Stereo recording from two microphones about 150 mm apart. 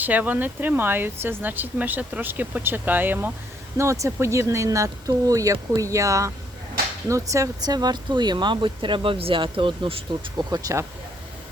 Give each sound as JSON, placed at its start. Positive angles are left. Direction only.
{"t": 0.0, "sound": "speech", "side_deg": -10}